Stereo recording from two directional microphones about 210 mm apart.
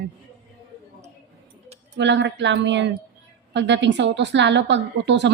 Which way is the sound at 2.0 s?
60° right (ahead or behind).